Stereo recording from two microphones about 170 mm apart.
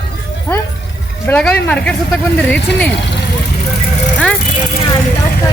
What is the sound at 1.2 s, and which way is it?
Speech, 10° left (ahead or behind).